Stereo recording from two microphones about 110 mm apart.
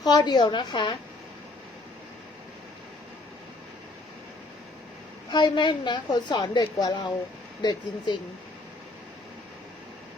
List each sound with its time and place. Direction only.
0.0 s a woman's voice: 40° left (ahead or behind)
5.3 s a woman's voice: 45° left (ahead or behind)